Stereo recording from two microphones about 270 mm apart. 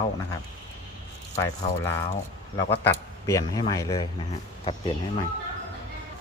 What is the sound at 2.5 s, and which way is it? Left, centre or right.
Speech, centre.